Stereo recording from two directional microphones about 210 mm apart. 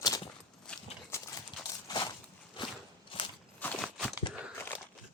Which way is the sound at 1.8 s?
20° left (ahead or behind).